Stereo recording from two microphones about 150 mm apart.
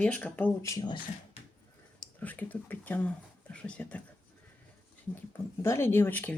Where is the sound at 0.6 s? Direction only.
30° left (ahead or behind).